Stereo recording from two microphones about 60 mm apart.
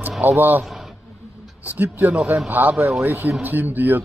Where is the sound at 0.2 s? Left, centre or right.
Right.